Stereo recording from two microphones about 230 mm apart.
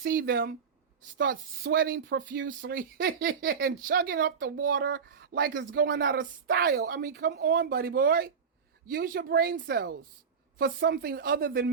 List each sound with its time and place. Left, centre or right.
0.0 s speech: right
0.3 s speech: right
1.3 s speech: right